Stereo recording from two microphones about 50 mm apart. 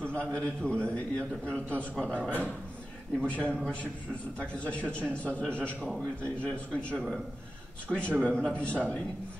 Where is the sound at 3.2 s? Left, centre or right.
Left.